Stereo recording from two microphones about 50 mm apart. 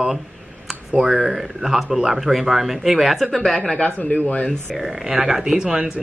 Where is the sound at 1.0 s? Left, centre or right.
Centre.